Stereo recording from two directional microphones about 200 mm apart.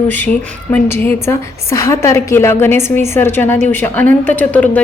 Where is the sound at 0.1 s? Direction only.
10° left (ahead or behind).